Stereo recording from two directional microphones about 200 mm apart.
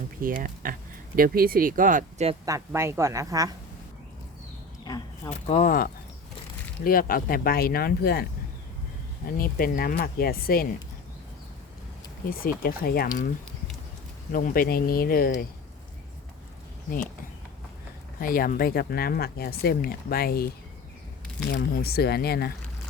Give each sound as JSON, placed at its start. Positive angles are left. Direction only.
{"t": 0.2, "sound": "speech", "side_deg": -45}
{"t": 2.5, "sound": "speech", "side_deg": -15}
{"t": 4.9, "sound": "speech", "side_deg": 20}
{"t": 5.5, "sound": "speech", "side_deg": 40}
{"t": 12.3, "sound": "speech", "side_deg": 45}
{"t": 14.3, "sound": "speech", "side_deg": 45}
{"t": 18.2, "sound": "speech", "side_deg": 45}
{"t": 21.5, "sound": "speech", "side_deg": 50}